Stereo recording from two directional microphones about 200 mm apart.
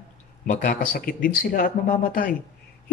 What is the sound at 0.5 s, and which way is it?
Speech, 40° left (ahead or behind).